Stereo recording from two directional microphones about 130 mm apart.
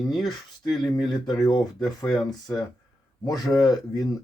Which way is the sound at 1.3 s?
30° left (ahead or behind).